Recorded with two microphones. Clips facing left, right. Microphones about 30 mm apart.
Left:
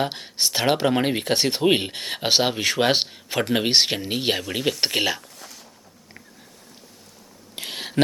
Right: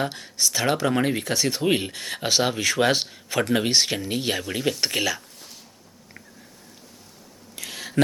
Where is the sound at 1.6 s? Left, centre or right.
Left.